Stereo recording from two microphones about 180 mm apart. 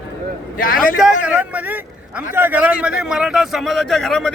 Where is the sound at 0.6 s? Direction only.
50° left (ahead or behind).